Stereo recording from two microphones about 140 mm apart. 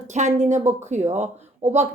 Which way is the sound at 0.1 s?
60° right (ahead or behind).